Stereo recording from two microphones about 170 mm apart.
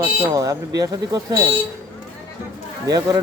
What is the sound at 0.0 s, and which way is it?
Speech, 20° right (ahead or behind).